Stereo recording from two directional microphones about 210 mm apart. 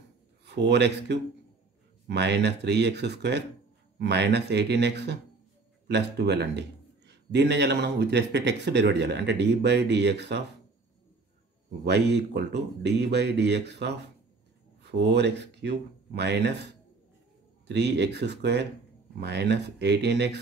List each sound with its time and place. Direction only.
0.5 s speech: 55° right (ahead or behind)
11.8 s speech: 55° right (ahead or behind)